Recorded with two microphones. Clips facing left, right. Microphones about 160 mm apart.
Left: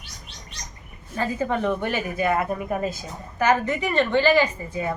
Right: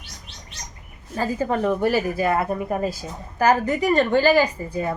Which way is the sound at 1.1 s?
35° right (ahead or behind).